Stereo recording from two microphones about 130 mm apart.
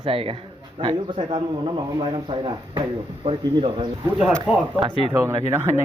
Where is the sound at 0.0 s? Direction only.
45° right (ahead or behind).